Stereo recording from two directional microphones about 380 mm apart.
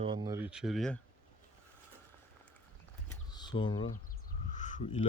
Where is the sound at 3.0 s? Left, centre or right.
Centre.